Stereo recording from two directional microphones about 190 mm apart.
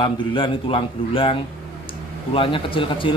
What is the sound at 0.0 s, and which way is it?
A man's voice, 25° left (ahead or behind).